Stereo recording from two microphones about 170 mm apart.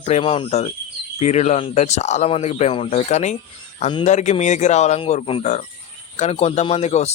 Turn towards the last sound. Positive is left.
turn(degrees=40)  # may be behind; listen again after turning